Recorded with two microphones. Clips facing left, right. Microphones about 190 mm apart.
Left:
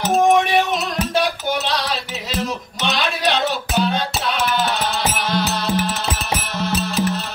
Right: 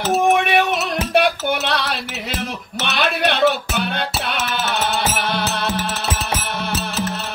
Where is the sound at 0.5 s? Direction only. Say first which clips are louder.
Right 1 dB; 60° right (ahead or behind).